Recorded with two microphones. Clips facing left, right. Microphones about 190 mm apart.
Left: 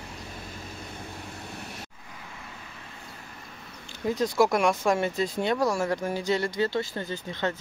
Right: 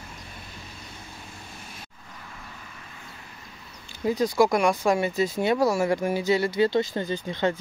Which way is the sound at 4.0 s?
Centre (ahead or behind).